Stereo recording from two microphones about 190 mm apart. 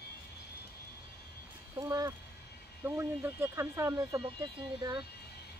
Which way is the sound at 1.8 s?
20° right (ahead or behind).